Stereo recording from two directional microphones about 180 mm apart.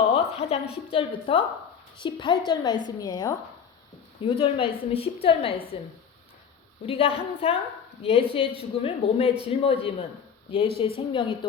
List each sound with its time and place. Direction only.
0.1 s a sound: 35° left (ahead or behind)
0.9 s a woman's voice: 30° left (ahead or behind)
6.8 s a woman's voice: 35° left (ahead or behind)